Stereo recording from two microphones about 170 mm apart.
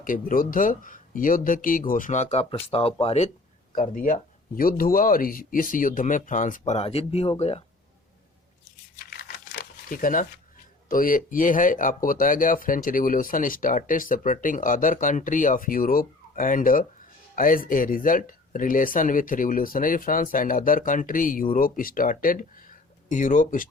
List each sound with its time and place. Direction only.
0.0 s speech: 55° left (ahead or behind); by 3.2 s 35° left (ahead or behind)
3.7 s speech: 55° left (ahead or behind)
9.0 s crumpling: 65° left (ahead or behind)
10.8 s speech: 55° left (ahead or behind)